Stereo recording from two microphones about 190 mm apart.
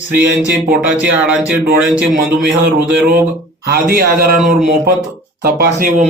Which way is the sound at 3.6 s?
50° right (ahead or behind).